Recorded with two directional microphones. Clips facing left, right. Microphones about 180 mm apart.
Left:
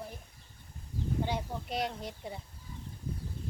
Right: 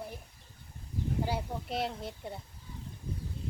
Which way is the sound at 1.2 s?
5° right (ahead or behind).